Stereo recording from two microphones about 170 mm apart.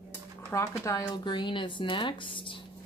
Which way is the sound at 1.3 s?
30° left (ahead or behind).